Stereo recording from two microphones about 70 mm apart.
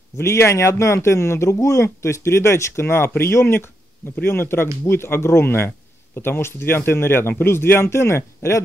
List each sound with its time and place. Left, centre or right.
0.2 s speech: left